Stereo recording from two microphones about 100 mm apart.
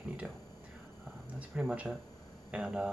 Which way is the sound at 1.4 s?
10° right (ahead or behind).